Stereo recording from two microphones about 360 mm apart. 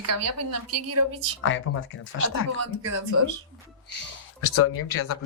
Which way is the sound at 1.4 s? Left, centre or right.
Left.